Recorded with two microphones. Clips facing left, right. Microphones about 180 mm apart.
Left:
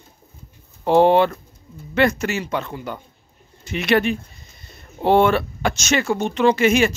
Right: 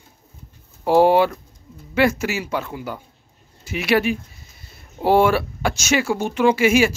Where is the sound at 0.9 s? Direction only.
5° right (ahead or behind).